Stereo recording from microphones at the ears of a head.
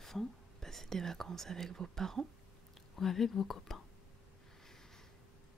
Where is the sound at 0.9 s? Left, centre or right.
Right.